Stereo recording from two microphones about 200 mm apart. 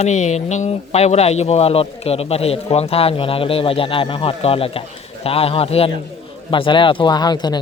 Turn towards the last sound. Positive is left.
turn(degrees=20)  # may be behind; listen again after turning